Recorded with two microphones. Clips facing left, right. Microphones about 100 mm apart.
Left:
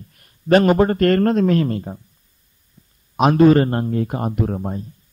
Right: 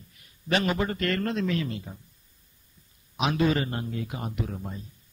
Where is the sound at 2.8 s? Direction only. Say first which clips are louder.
Left 10 dB; 70° left (ahead or behind).